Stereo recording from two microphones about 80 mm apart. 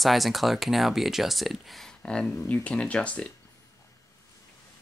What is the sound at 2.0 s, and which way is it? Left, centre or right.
Speech, centre.